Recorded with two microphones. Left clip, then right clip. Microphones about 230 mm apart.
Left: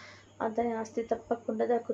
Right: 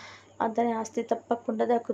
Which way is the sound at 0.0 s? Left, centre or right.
Right.